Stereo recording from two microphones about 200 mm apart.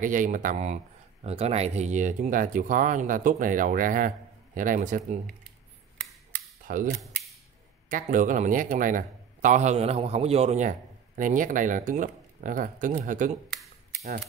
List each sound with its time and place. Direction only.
0.0 s a man's voice: 40° right (ahead or behind)
6.6 s speech: 40° right (ahead or behind)
7.9 s a man's voice: 40° right (ahead or behind)